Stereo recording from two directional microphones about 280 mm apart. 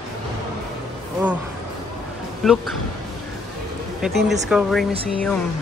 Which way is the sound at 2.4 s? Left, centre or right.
Centre.